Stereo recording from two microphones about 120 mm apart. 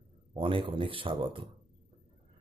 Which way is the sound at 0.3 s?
45° right (ahead or behind).